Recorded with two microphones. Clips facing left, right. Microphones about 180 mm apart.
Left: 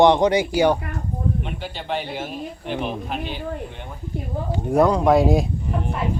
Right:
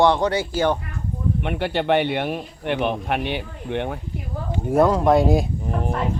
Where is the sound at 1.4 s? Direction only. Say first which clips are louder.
Right 8 dB; 65° right (ahead or behind).